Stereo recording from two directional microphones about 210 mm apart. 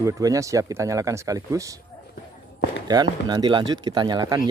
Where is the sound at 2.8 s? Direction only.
20° right (ahead or behind).